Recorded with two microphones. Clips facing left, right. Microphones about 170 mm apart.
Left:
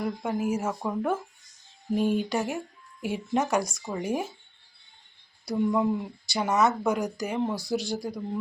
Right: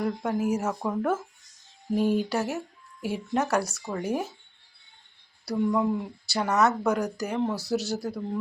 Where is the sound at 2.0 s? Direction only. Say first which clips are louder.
Right 1 dB; 15° left (ahead or behind).